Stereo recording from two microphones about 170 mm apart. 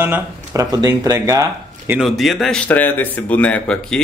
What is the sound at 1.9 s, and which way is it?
Speech, centre (ahead or behind).